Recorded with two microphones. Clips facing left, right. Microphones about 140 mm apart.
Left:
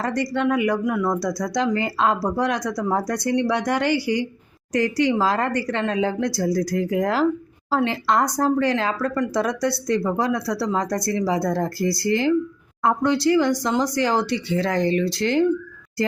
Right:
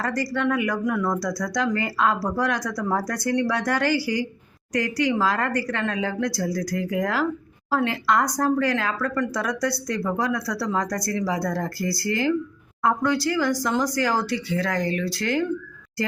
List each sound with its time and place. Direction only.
0.0 s speech: 20° left (ahead or behind)